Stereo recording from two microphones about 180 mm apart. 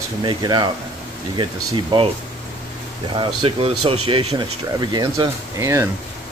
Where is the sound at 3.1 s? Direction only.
30° right (ahead or behind).